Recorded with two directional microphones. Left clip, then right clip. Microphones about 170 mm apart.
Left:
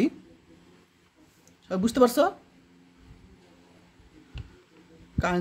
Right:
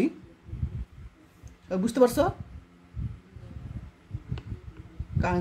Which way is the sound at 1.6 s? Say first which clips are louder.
Left 1 dB; 30° left (ahead or behind).